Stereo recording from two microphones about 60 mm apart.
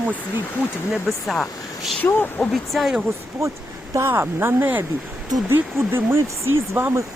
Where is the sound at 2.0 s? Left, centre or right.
Left.